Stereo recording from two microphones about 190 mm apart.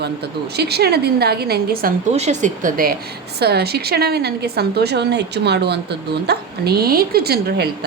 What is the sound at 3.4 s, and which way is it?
A woman's voice, 60° right (ahead or behind).